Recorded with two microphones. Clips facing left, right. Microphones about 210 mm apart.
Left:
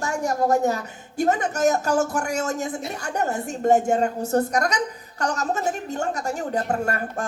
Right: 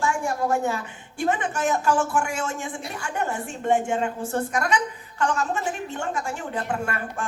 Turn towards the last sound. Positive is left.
turn(degrees=40)  # may be behind; listen again after turning